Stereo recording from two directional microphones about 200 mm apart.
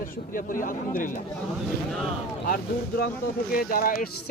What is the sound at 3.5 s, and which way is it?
Speech, 45° left (ahead or behind).